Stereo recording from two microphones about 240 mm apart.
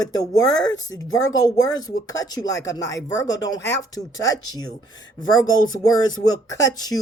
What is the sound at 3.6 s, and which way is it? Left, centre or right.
Speech, left.